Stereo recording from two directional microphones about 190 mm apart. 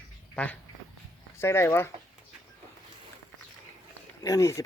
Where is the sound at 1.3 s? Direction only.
15° left (ahead or behind).